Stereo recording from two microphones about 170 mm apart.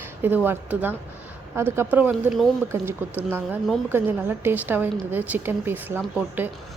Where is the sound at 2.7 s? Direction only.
10° right (ahead or behind).